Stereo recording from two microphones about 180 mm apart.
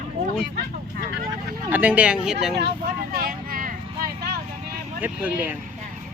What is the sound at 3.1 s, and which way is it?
Vehicle, 55° right (ahead or behind).